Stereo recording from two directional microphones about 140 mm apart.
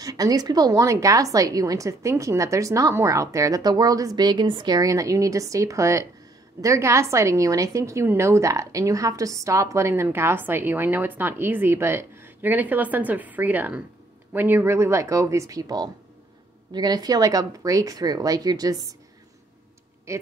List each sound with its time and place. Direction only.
0.0 s a woman's voice: 25° right (ahead or behind)
20.1 s a woman's voice: 20° right (ahead or behind)